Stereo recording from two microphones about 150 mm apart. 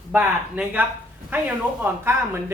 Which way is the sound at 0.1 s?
10° right (ahead or behind).